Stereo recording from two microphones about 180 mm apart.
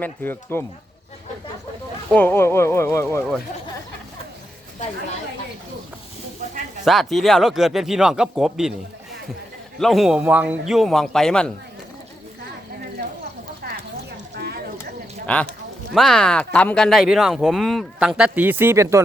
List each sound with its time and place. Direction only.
0.0 s speech: 10° left (ahead or behind)
2.0 s speech: 10° left (ahead or behind)
6.8 s speech: centre (ahead or behind)
9.8 s speech: centre (ahead or behind)
14.3 s a sound: 60° right (ahead or behind)
16.0 s speech: centre (ahead or behind); by 19.0 s 15° right (ahead or behind)